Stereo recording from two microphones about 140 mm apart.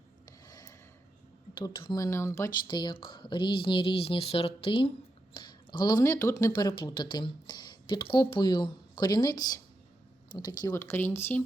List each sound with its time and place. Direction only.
0.4 s a sound: 25° left (ahead or behind)
1.5 s speech: 35° left (ahead or behind)
2.0 s speech: 20° left (ahead or behind)
10.7 s speech: 20° left (ahead or behind)